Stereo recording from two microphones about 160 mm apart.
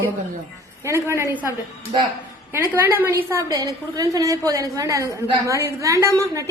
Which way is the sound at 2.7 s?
15° right (ahead or behind).